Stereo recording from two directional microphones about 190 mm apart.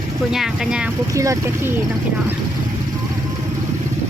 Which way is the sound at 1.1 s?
15° right (ahead or behind).